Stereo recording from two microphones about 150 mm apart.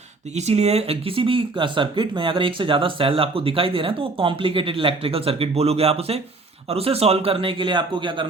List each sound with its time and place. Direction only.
0.3 s speech: 45° right (ahead or behind)